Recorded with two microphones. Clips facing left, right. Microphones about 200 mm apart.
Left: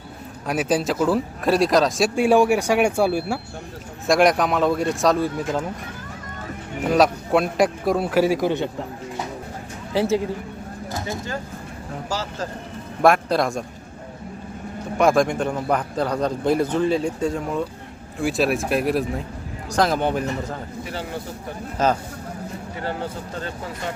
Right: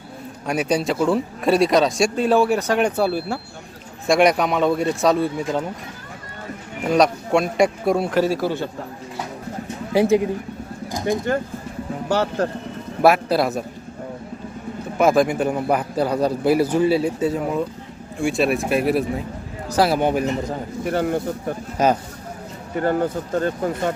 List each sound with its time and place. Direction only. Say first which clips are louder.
0.4 s speech: right 1 dB; centre (ahead or behind)
4.0 s speech: right 1 dB; centre (ahead or behind)
6.8 s speech: right 1 dB; centre (ahead or behind)
8.2 s a man's voice: left 1 dB; 15° left (ahead or behind)
9.9 s speech: right 4 dB; 15° right (ahead or behind)
11.3 s speech: right 7 dB; 60° right (ahead or behind)
13.0 s a man's voice: right 1 dB; 5° right (ahead or behind)
14.9 s a man's voice: right 1 dB; 5° right (ahead or behind)
20.8 s speech: right 13 dB; 55° right (ahead or behind)
21.8 s a man's voice: right 2 dB; 15° right (ahead or behind)
22.7 s speech: right 10 dB; 50° right (ahead or behind)